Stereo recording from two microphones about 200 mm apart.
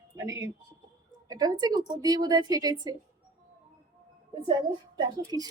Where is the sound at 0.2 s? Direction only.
15° right (ahead or behind).